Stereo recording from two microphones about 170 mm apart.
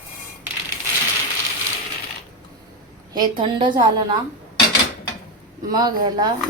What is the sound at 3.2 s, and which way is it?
Speech, 25° right (ahead or behind).